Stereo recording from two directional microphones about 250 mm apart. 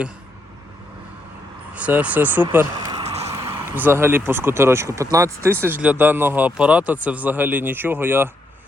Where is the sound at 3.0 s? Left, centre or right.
Right.